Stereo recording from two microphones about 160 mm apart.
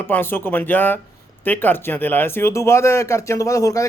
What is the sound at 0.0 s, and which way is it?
Speech, 15° left (ahead or behind).